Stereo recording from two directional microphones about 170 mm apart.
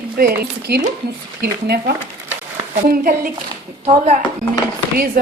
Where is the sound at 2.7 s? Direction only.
55° right (ahead or behind).